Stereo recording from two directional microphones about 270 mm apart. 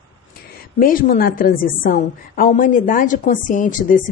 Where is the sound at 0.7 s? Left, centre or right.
Left.